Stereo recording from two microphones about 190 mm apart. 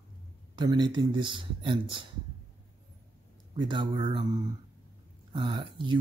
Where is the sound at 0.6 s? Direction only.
20° right (ahead or behind).